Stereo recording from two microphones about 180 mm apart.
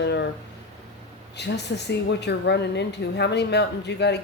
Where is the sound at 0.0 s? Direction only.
70° left (ahead or behind).